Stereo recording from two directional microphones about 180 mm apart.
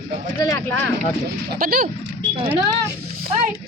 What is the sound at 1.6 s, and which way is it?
Speech, 55° right (ahead or behind).